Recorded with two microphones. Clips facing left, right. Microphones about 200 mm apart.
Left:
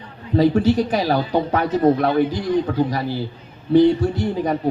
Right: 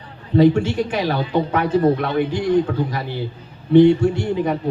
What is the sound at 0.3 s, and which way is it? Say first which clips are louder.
Speech: right 1 dB; 35° left (ahead or behind).